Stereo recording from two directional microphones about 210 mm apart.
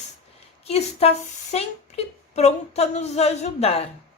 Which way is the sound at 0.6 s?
30° left (ahead or behind).